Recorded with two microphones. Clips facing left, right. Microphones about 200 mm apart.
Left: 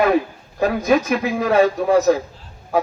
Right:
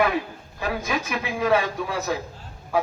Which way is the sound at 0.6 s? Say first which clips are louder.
Left 10 dB; 40° left (ahead or behind).